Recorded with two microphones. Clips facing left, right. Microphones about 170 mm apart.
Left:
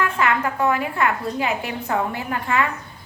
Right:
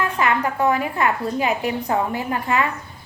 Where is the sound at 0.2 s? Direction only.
15° right (ahead or behind).